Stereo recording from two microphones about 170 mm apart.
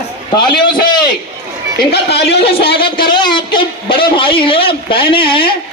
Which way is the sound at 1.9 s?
75° left (ahead or behind).